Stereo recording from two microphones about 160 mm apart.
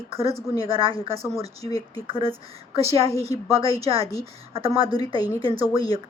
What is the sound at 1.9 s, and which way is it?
A woman's voice, 35° right (ahead or behind).